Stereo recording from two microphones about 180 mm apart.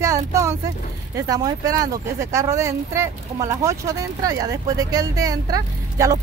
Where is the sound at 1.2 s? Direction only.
20° right (ahead or behind).